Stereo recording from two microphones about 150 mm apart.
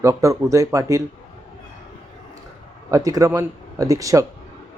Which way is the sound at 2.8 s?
20° right (ahead or behind).